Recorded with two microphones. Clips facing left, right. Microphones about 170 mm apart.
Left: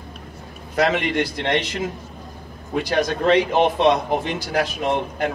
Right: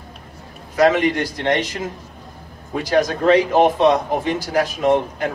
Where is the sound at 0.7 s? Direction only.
45° right (ahead or behind).